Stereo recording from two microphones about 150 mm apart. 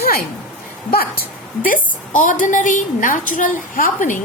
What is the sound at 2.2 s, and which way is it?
A woman's voice, 60° left (ahead or behind).